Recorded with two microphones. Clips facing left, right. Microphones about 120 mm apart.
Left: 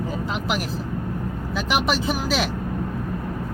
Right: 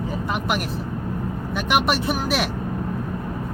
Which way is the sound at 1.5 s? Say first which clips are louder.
Right 2 dB; 60° right (ahead or behind).